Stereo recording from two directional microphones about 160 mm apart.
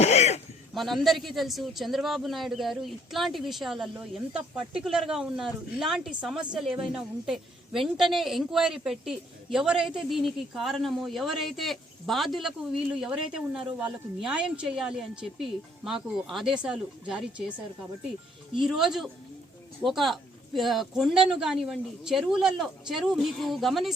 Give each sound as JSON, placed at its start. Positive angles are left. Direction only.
{"t": 0.0, "sound": "a sound", "side_deg": 45}
{"t": 0.7, "sound": "a man's voice", "side_deg": 0}
{"t": 18.6, "sound": "a man's voice", "side_deg": 0}